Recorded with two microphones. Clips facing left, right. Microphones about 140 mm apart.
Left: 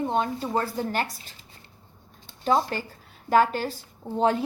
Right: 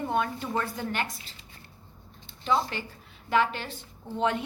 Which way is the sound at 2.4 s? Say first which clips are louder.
Left 4 dB; 45° left (ahead or behind).